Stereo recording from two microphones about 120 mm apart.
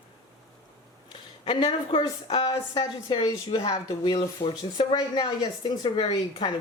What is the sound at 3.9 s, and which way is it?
Speech, 35° left (ahead or behind).